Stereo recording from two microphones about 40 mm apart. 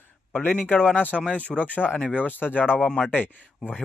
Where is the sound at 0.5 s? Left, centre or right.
Left.